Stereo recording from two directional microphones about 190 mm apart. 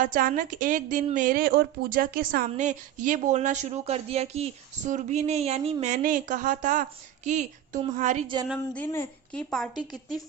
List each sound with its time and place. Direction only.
0.0 s a woman's voice: 45° right (ahead or behind)
8.5 s a woman's voice: 10° left (ahead or behind)